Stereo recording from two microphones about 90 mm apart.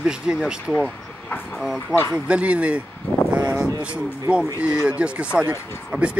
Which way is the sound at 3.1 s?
25° left (ahead or behind).